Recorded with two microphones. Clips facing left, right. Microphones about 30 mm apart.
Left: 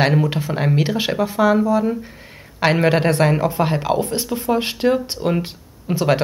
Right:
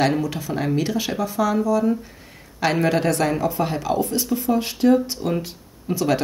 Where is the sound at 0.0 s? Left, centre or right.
Left.